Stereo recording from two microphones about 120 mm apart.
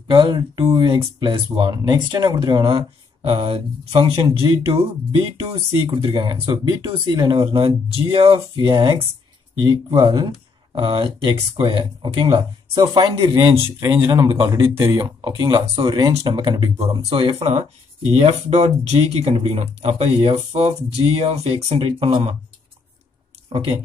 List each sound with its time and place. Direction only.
0.1 s speech: 40° right (ahead or behind)
14.5 s speech: 25° right (ahead or behind)
15.0 s speech: 35° right (ahead or behind)
16.0 s speech: 35° right (ahead or behind)
18.1 s speech: 60° right (ahead or behind)